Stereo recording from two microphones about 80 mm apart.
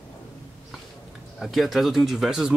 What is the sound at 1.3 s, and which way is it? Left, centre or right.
Speech, centre.